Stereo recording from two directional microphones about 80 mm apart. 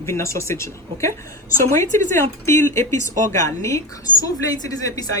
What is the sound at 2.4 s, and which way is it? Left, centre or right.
Speech, left.